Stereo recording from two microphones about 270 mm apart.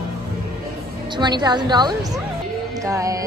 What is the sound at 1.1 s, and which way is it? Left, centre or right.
Speech, centre.